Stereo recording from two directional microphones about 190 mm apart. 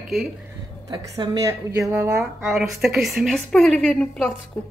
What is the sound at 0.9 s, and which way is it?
A woman's voice, 20° right (ahead or behind).